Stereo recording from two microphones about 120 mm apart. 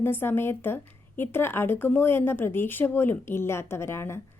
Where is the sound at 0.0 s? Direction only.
20° left (ahead or behind).